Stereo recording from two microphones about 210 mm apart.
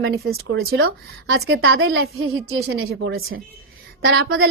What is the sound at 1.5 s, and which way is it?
Speech, 75° right (ahead or behind).